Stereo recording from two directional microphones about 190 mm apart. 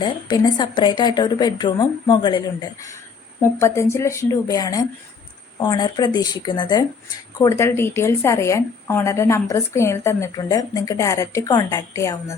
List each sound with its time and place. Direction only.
0.0 s a woman's voice: 20° left (ahead or behind)